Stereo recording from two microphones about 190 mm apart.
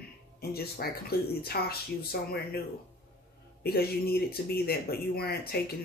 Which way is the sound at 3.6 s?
55° left (ahead or behind).